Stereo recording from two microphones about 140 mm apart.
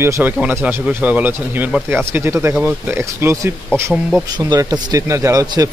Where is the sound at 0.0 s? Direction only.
15° right (ahead or behind).